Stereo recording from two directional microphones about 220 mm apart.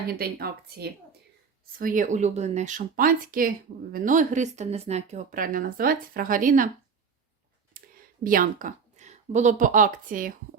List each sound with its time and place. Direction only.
0.1 s speech: 45° right (ahead or behind)
7.8 s a sound: 40° right (ahead or behind)
8.2 s a woman's voice: 40° right (ahead or behind)